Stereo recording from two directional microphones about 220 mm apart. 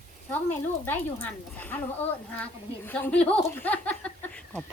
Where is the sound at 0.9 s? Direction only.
10° left (ahead or behind).